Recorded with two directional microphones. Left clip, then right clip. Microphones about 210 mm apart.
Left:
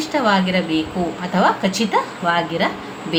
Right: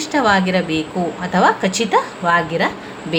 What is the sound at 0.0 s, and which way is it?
A woman's voice, 35° right (ahead or behind).